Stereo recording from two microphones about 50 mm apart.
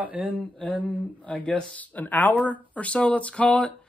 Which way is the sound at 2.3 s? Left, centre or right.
Left.